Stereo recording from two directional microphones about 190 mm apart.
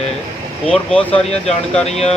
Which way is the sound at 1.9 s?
35° left (ahead or behind).